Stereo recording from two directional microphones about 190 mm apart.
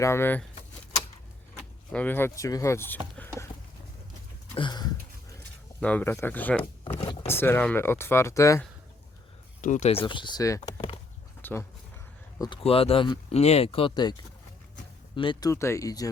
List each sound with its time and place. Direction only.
0.0 s speech: 15° left (ahead or behind)
1.9 s speech: 10° left (ahead or behind)
3.2 s a sound: 10° left (ahead or behind)
4.5 s a sound: 25° left (ahead or behind)
5.8 s speech: 10° left (ahead or behind)
7.0 s speech: 30° left (ahead or behind)
7.3 s speech: 10° left (ahead or behind)
9.6 s speech: 40° left (ahead or behind); by 11.6 s 10° left (ahead or behind)
12.4 s speech: 25° left (ahead or behind)